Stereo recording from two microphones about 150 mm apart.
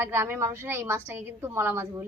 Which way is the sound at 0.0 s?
15° right (ahead or behind).